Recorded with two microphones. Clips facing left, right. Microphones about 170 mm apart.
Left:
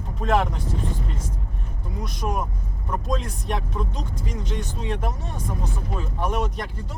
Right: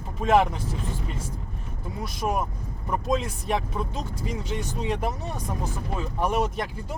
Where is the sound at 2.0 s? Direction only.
5° right (ahead or behind).